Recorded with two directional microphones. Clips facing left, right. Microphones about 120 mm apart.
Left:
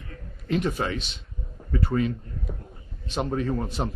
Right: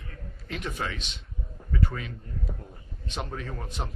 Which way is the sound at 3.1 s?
35° left (ahead or behind).